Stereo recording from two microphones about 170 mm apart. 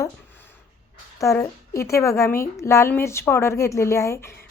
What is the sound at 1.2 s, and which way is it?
A woman's voice, 20° left (ahead or behind).